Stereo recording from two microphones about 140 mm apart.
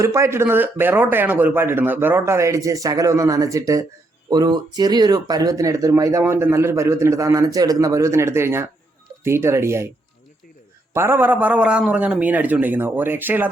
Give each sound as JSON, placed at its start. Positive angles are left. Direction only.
{"t": 0.0, "sound": "speech", "side_deg": -20}
{"t": 10.9, "sound": "speech", "side_deg": -15}